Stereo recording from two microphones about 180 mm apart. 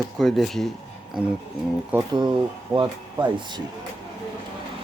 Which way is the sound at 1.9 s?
10° right (ahead or behind).